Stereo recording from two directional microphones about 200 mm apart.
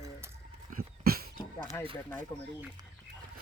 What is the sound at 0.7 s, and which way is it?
Dog, 50° right (ahead or behind).